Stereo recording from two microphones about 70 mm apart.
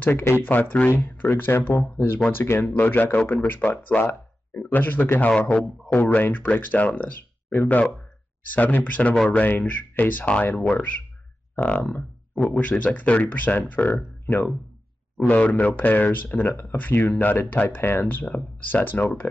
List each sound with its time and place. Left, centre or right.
0.0 s speech: left
2.7 s speech: left
5.5 s a man's voice: centre
5.9 s speech: left